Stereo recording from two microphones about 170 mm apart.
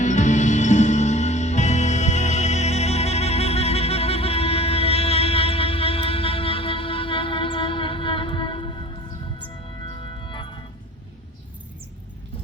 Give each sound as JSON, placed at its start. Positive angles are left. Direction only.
{"t": 0.0, "sound": "music", "side_deg": 45}